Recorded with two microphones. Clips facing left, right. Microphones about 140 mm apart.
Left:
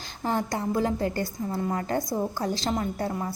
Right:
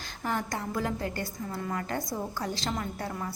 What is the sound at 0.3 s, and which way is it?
A woman's voice, 25° left (ahead or behind).